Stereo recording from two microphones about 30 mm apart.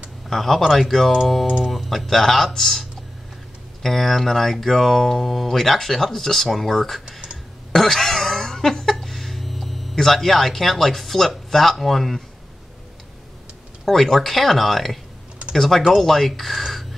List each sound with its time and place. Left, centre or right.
0.3 s speech: centre
3.8 s speech: centre
7.1 s computer keyboard: right
7.7 s a sound: centre
10.1 s speech: centre
13.8 s speech: centre